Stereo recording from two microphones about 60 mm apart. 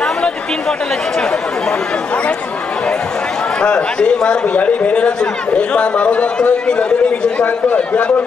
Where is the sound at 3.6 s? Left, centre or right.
Centre.